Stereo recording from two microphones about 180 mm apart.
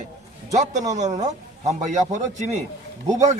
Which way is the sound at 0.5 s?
40° right (ahead or behind).